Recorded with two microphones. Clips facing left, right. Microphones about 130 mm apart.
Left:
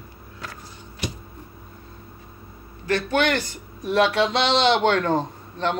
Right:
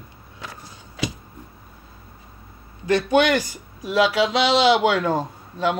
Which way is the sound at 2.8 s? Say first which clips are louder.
Right 4 dB; 15° right (ahead or behind).